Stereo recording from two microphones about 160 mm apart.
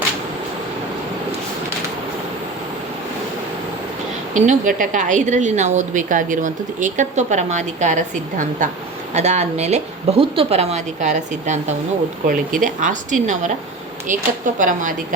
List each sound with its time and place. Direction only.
4.4 s a woman's voice: 50° right (ahead or behind)